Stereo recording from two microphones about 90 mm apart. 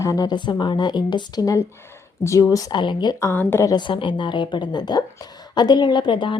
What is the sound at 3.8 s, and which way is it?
A woman's voice, 70° left (ahead or behind).